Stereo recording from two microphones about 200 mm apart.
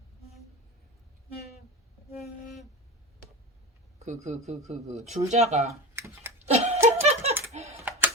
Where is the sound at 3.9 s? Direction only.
35° right (ahead or behind).